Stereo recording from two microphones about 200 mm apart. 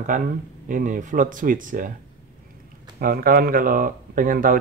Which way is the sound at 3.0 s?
45° right (ahead or behind).